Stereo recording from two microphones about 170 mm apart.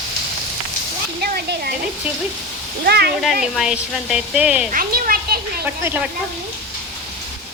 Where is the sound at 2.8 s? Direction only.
70° right (ahead or behind).